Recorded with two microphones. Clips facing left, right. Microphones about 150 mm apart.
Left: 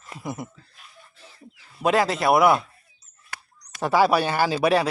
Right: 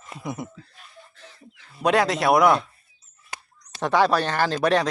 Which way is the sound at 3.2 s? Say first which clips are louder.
Right 1 dB; 20° right (ahead or behind).